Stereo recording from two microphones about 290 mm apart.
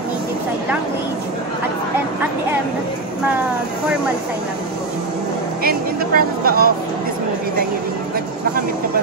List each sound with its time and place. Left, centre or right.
5.6 s speech: right